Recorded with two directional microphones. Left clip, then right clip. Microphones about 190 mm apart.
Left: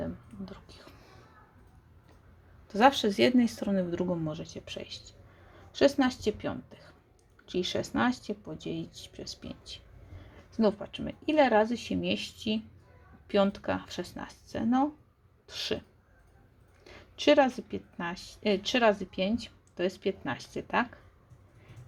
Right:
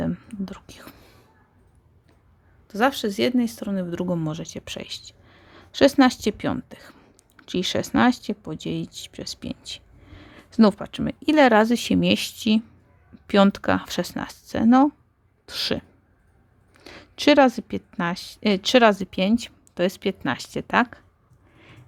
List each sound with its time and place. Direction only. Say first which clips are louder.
0.0 s whispering: right 9 dB; 45° right (ahead or behind)
2.6 s a woman's voice: right 1 dB; 25° right (ahead or behind); by 15.8 s 50° right (ahead or behind)
16.8 s a woman's voice: right 6 dB; 50° right (ahead or behind)